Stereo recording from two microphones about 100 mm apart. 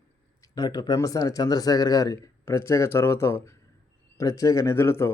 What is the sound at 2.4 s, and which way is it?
A man's voice, 30° left (ahead or behind).